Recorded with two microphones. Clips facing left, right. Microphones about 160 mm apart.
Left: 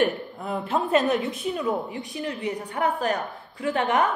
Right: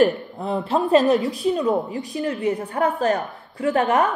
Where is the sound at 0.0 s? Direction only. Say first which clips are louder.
Right 6 dB; 30° right (ahead or behind).